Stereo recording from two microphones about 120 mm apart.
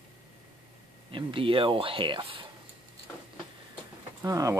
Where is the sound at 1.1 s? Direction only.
45° right (ahead or behind).